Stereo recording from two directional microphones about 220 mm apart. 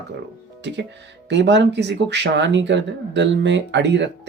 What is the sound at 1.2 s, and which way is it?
Speech, 50° right (ahead or behind).